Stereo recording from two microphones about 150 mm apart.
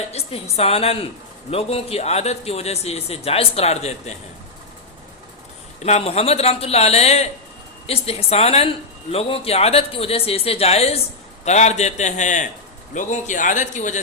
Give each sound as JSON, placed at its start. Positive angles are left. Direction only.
{"t": 0.1, "sound": "speech", "side_deg": 40}
{"t": 5.8, "sound": "a man's voice", "side_deg": 45}